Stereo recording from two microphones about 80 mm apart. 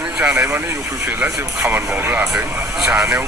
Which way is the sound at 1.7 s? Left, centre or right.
Right.